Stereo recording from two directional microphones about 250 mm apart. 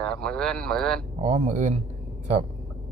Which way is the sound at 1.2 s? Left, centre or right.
Right.